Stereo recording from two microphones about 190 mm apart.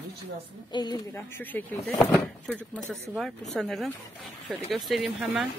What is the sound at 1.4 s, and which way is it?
Speech, 10° left (ahead or behind).